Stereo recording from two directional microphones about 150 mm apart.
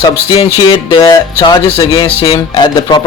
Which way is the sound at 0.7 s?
30° left (ahead or behind).